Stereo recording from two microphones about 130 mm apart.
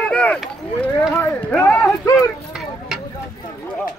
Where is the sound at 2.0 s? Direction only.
25° left (ahead or behind).